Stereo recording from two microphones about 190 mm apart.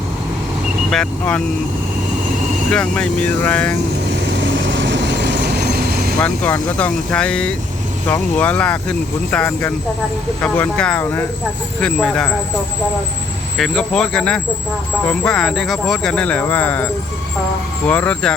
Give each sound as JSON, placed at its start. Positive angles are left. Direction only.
{"t": 0.9, "sound": "speech", "side_deg": 5}
{"t": 2.6, "sound": "speech", "side_deg": 5}
{"t": 4.5, "sound": "vehicle", "side_deg": -70}
{"t": 6.1, "sound": "speech", "side_deg": 10}
{"t": 13.6, "sound": "speech", "side_deg": 5}